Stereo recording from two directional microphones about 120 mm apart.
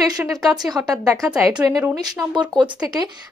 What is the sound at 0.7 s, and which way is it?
Speech, 30° right (ahead or behind).